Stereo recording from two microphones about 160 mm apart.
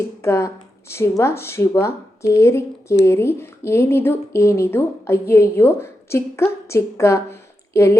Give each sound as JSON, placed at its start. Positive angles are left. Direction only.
{"t": 0.2, "sound": "speech", "side_deg": 15}